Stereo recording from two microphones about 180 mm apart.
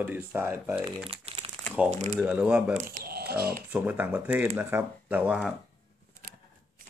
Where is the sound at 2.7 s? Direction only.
45° right (ahead or behind); by 3.5 s 60° right (ahead or behind).